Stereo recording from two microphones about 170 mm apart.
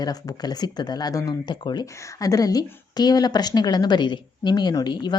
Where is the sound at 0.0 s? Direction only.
25° left (ahead or behind).